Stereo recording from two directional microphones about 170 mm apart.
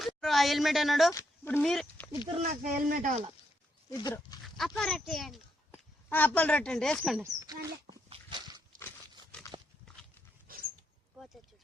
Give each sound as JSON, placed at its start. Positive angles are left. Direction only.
{"t": 0.0, "sound": "a woman's voice", "side_deg": 0}
{"t": 2.5, "sound": "speech", "side_deg": -50}
{"t": 3.8, "sound": "speech", "side_deg": 20}
{"t": 4.4, "sound": "dog", "side_deg": 0}
{"t": 4.8, "sound": "a child's voice", "side_deg": 0}
{"t": 7.2, "sound": "a sound", "side_deg": -20}
{"t": 10.5, "sound": "a sound", "side_deg": -55}